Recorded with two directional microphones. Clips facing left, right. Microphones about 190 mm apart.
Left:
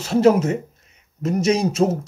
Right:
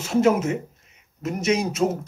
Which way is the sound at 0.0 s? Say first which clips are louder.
Left 4 dB; 35° left (ahead or behind).